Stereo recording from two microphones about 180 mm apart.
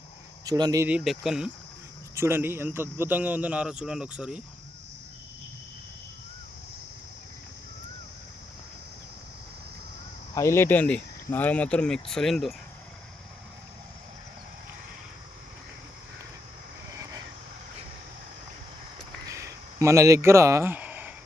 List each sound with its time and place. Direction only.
0.4 s speech: 20° right (ahead or behind)
0.9 s speech: 5° right (ahead or behind)
2.1 s a man's voice: 15° right (ahead or behind)
10.3 s speech: 15° left (ahead or behind)
19.2 s a sound: 15° right (ahead or behind)